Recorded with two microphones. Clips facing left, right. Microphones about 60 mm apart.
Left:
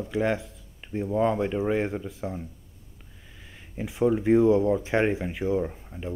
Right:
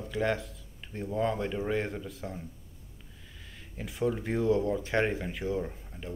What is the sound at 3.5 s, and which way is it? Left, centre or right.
Speech, centre.